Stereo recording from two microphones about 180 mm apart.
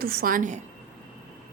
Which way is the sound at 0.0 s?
55° right (ahead or behind).